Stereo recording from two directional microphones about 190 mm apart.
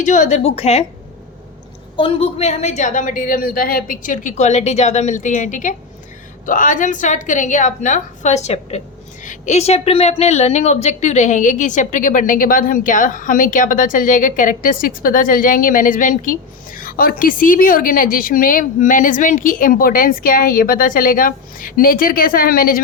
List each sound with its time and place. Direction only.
0.0 s a woman's voice: 40° left (ahead or behind)
2.0 s a woman's voice: 30° left (ahead or behind); by 22.8 s 50° left (ahead or behind)